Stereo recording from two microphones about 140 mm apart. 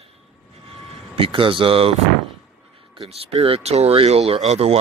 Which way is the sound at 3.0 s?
45° right (ahead or behind).